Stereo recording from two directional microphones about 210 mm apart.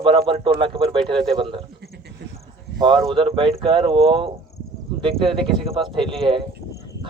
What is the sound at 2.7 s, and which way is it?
Speech, 20° right (ahead or behind).